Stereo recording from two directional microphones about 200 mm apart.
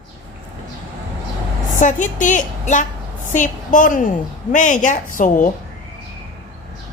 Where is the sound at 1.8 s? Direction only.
40° left (ahead or behind).